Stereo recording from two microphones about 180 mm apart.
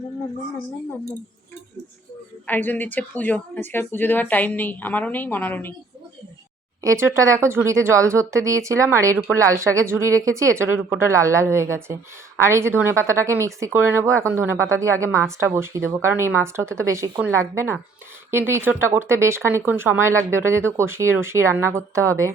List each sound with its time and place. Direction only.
2.5 s speech: 10° left (ahead or behind)
6.8 s speech: 15° right (ahead or behind)